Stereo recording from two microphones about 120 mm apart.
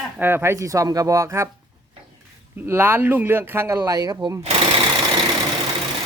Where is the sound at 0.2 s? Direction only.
20° right (ahead or behind).